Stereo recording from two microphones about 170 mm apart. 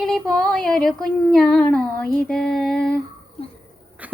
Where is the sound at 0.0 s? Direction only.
Centre (ahead or behind).